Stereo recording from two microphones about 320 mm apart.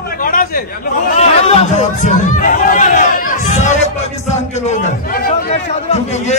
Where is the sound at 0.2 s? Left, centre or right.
Left.